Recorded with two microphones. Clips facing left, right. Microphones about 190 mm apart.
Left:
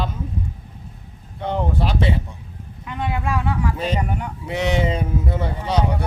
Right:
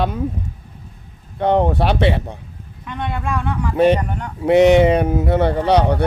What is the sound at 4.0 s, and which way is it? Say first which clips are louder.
Speech: even; 10° left (ahead or behind).